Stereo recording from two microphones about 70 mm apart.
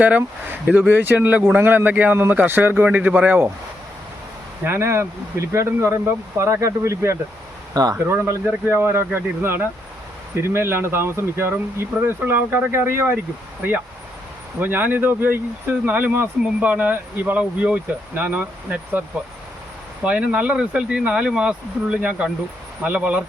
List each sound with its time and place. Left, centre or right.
0.0 s speech: right
4.6 s speech: right
7.7 s speech: right
8.0 s speech: right
14.6 s speech: right
16.4 s speech: centre